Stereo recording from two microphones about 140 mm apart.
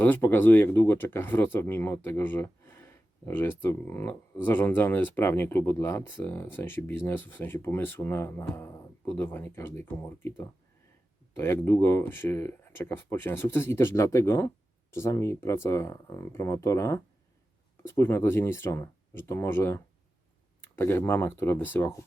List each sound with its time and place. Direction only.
0.0 s speech: 15° left (ahead or behind)